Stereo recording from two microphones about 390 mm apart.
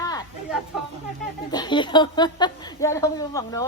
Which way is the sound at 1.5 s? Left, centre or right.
Centre.